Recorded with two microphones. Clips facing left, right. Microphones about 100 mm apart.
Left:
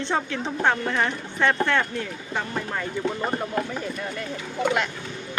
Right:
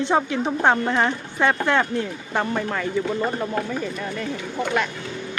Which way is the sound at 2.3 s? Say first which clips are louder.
Right 5 dB; 85° right.